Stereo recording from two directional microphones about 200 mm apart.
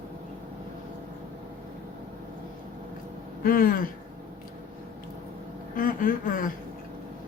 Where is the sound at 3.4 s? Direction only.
45° left (ahead or behind).